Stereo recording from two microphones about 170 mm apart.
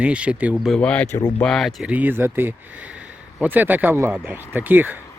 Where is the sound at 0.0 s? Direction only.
5° right (ahead or behind).